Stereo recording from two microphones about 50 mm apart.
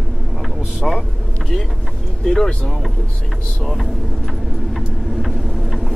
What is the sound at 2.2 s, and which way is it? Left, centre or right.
Speech, centre.